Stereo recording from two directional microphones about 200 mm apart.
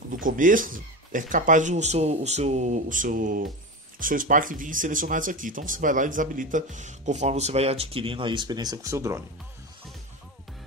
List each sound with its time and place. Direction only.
0.1 s speech: 40° right (ahead or behind); by 9.2 s 15° right (ahead or behind)